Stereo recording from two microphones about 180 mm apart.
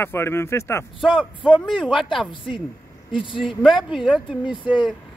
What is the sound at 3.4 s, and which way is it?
Speech, centre (ahead or behind).